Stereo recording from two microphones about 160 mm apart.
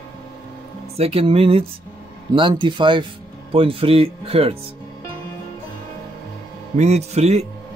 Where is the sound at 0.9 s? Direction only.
40° right (ahead or behind).